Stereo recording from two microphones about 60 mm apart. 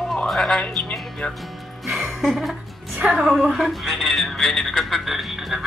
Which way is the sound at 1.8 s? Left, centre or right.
Centre.